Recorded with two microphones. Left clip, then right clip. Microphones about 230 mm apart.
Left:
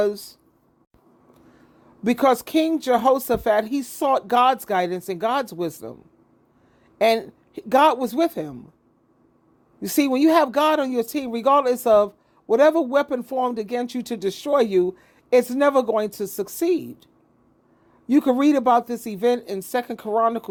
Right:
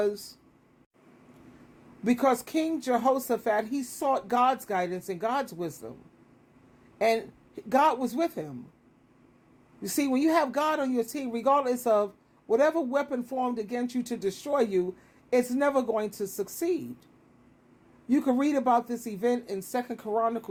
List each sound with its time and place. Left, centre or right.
0.0 s speech: left
2.0 s speech: left
7.0 s speech: left
9.8 s speech: left
18.1 s speech: left